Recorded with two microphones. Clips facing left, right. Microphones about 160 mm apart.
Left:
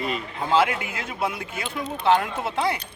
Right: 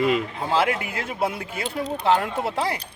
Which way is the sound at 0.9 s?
35° right (ahead or behind).